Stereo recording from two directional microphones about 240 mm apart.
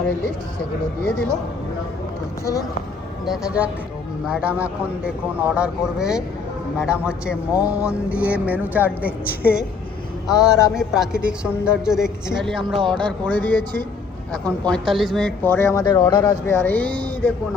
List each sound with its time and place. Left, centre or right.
1.0 s a man's voice: centre
2.4 s speech: centre
3.2 s a man's voice: centre